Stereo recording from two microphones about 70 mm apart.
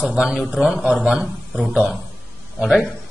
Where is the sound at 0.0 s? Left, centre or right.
Centre.